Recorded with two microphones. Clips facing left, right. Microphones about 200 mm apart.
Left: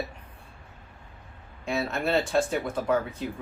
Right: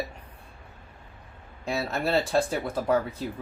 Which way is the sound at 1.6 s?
35° right (ahead or behind).